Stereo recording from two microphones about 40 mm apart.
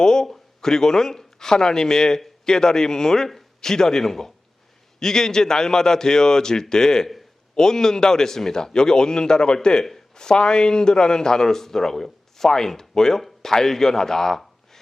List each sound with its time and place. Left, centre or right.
0.0 s a man's voice: centre